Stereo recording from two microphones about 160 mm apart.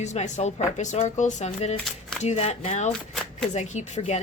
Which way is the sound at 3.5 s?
45° left (ahead or behind).